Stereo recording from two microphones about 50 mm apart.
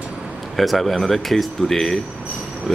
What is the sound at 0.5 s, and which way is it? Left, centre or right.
Speech, centre.